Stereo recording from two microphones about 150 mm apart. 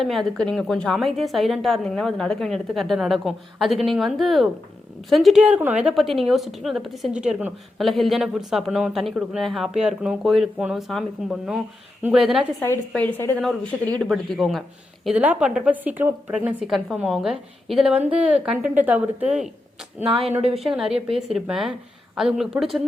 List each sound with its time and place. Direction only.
0.0 s a woman's voice: centre (ahead or behind)
12.9 s a woman's voice: 10° left (ahead or behind); by 19.5 s 10° right (ahead or behind)
20.4 s a woman's voice: 40° right (ahead or behind)
21.3 s a woman's voice: centre (ahead or behind)